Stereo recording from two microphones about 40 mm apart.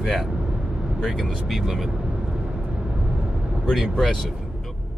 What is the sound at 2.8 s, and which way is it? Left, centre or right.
Vehicle, right.